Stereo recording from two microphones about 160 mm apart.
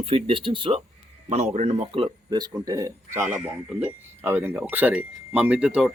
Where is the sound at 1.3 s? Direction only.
45° right (ahead or behind).